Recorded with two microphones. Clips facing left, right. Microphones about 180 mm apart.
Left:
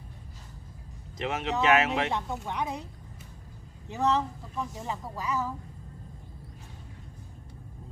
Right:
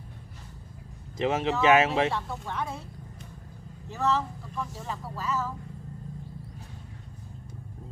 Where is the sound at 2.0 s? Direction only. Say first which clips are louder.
Right 1 dB; 15° left (ahead or behind).